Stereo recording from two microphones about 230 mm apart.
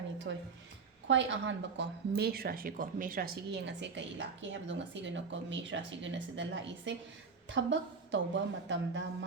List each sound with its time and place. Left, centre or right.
0.3 s speech: right